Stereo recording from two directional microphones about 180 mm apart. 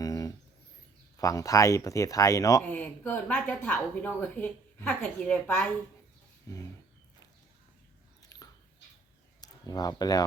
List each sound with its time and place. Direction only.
0.0 s a sound: 20° left (ahead or behind)
1.1 s speech: 20° left (ahead or behind)
8.2 s dog: 20° left (ahead or behind)
9.4 s speech: 20° left (ahead or behind)